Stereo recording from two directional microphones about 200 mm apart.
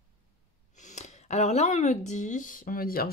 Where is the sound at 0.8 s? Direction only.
35° left (ahead or behind).